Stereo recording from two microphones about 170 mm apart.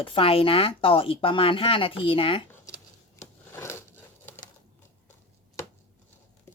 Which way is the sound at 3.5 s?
15° left (ahead or behind).